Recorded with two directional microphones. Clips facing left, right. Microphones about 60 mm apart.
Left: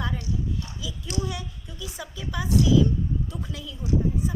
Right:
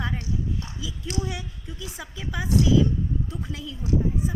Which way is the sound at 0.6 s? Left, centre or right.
Right.